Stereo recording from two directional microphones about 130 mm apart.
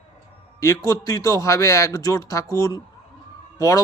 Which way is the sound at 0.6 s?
25° left (ahead or behind).